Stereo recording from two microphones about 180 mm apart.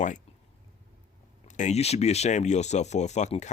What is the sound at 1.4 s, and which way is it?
Speech, 40° left (ahead or behind).